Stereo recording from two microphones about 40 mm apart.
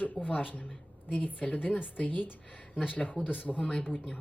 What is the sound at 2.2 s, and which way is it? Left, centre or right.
Speech, left.